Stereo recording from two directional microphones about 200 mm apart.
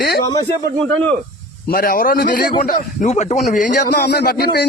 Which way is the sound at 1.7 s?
45° left (ahead or behind).